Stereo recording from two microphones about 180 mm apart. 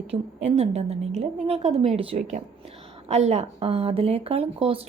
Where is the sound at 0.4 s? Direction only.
35° right (ahead or behind).